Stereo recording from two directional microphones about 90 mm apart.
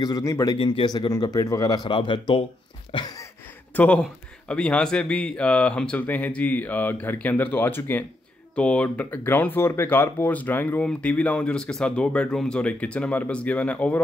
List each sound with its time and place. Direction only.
0.0 s speech: 40° left (ahead or behind)
0.6 s speech: 65° left (ahead or behind)
1.1 s speech: 40° left (ahead or behind)
1.9 s speech: 70° left (ahead or behind)
2.9 s a sound: 60° left (ahead or behind)
3.7 s speech: 20° left (ahead or behind)
8.5 s speech: 15° left (ahead or behind)